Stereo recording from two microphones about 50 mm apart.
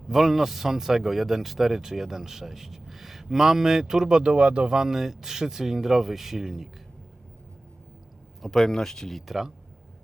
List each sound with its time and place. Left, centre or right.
0.1 s speech: centre
4.3 s speech: right
4.8 s speech: centre
8.4 s speech: centre